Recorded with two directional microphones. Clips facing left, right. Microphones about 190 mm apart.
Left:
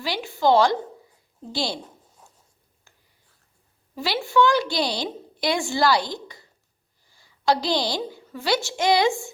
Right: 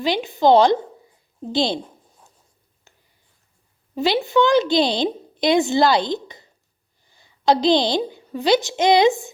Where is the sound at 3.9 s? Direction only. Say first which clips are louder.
Right 5 dB; 20° right (ahead or behind).